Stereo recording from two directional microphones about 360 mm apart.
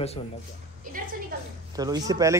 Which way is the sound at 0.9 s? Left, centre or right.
Right.